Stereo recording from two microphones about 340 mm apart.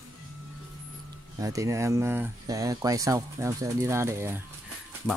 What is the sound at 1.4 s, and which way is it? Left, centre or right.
Speech, centre.